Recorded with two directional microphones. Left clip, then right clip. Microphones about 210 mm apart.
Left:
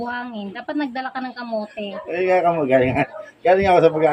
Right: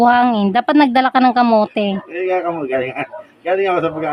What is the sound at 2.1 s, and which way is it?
Speech, 45° left (ahead or behind).